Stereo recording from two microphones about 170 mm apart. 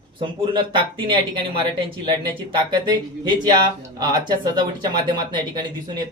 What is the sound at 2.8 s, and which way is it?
Speech, 25° right (ahead or behind).